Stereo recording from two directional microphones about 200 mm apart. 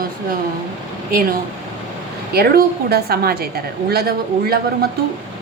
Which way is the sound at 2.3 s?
50° right (ahead or behind).